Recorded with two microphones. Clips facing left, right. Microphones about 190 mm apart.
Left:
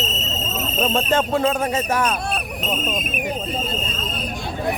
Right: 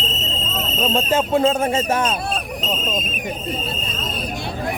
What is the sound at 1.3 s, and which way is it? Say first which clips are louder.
Speech: right 3 dB; 25° right (ahead or behind).